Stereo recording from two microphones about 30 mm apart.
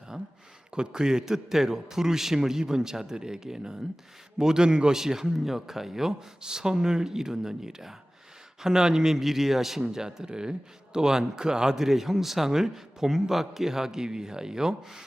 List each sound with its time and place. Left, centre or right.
0.7 s a man's voice: right
4.9 s a man's voice: centre
9.2 s a man's voice: centre
9.9 s a man's voice: centre
11.9 s a man's voice: centre